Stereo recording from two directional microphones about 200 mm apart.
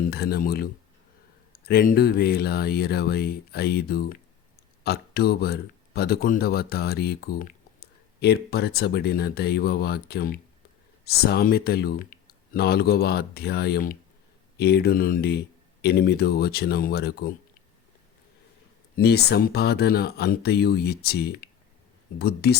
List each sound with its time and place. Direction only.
0.0 s speech: 50° left (ahead or behind)
18.9 s speech: 55° left (ahead or behind)